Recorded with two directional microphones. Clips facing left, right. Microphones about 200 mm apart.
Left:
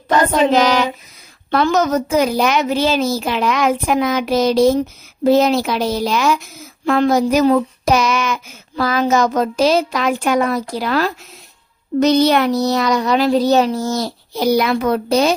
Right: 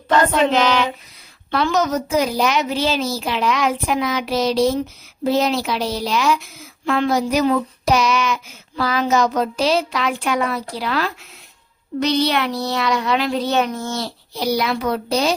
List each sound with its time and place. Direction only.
0.3 s child singing: 40° left (ahead or behind)
1.5 s speech: 45° left (ahead or behind)